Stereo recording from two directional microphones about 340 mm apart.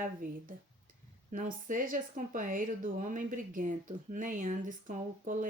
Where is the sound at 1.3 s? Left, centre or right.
Right.